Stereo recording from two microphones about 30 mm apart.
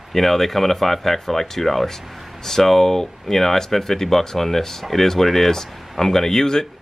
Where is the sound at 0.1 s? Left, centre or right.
Centre.